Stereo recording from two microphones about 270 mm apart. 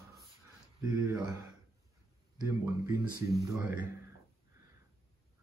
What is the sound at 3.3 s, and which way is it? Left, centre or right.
Speech, centre.